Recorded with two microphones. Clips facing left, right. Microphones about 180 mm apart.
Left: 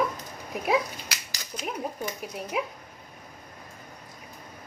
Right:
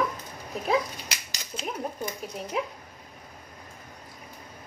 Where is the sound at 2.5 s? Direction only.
5° left (ahead or behind).